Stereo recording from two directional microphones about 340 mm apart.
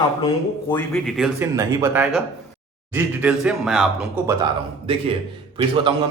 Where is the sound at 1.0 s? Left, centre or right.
Centre.